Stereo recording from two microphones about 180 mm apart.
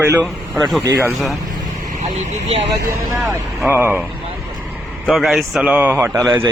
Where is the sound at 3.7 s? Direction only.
10° right (ahead or behind).